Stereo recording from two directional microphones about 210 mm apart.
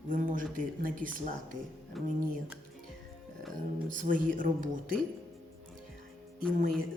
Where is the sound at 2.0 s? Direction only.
Centre (ahead or behind).